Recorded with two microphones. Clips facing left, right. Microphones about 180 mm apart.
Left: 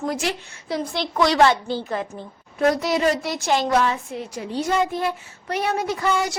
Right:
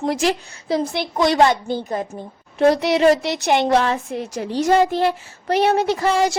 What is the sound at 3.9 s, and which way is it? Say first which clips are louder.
A child's voice: right 3 dB; 80° right.